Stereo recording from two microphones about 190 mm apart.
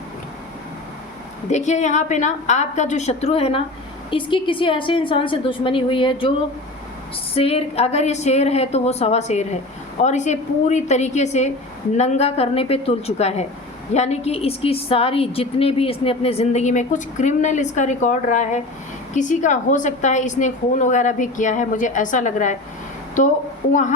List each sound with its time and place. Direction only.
1.5 s a woman's voice: 35° left (ahead or behind)
7.3 s a woman's voice: 30° left (ahead or behind)